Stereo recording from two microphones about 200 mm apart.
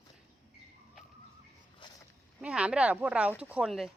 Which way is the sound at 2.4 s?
5° right (ahead or behind).